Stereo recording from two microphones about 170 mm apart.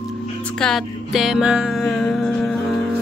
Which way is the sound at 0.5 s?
5° left (ahead or behind).